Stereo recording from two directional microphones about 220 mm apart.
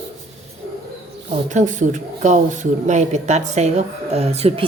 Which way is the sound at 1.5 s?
35° right (ahead or behind).